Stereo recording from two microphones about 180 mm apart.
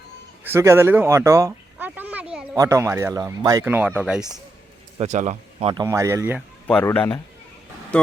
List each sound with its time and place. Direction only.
0.4 s a sound: 15° right (ahead or behind)
2.6 s a man's voice: 15° right (ahead or behind)
4.9 s speech: 40° right (ahead or behind); by 6.4 s 10° right (ahead or behind)
6.7 s speech: 5° left (ahead or behind)